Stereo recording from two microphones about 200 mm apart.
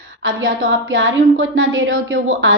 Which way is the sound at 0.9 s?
70° right (ahead or behind).